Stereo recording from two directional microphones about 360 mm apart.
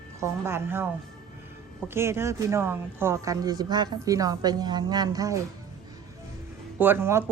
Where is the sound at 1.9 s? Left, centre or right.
Centre.